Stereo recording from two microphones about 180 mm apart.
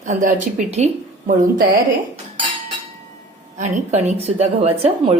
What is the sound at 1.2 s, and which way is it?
Speech, 50° right (ahead or behind).